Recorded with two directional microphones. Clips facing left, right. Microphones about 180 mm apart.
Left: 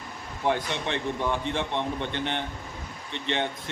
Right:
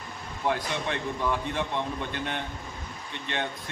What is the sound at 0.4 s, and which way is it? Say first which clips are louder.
A man's voice: left 2 dB; 25° left (ahead or behind).